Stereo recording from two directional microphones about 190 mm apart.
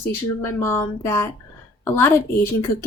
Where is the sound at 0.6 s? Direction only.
15° left (ahead or behind).